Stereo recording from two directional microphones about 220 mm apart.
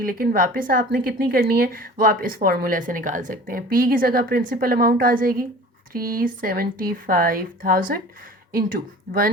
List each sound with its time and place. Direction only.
0.0 s a woman's voice: 40° right (ahead or behind)